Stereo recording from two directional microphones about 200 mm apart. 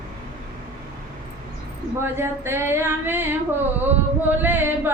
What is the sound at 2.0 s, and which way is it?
Chant, 10° right (ahead or behind).